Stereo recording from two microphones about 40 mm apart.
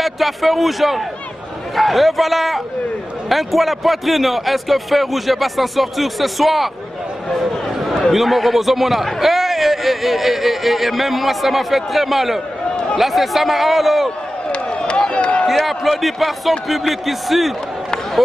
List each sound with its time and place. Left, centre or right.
0.0 s a man's voice: centre
8.1 s a man's voice: centre
14.5 s a sound: left
15.6 s a man's voice: centre